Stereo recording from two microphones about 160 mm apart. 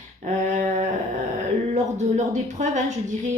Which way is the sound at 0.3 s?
50° right (ahead or behind).